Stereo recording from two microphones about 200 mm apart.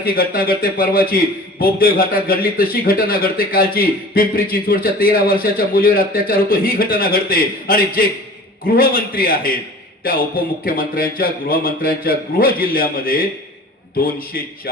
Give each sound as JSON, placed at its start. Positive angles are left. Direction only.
{"t": 0.0, "sound": "a man's voice", "side_deg": 45}